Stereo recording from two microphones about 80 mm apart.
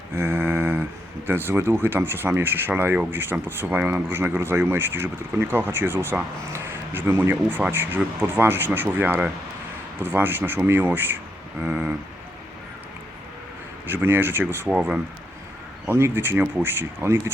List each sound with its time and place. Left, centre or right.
0.1 s a sound: right
1.3 s speech: right
13.9 s speech: right
15.9 s speech: right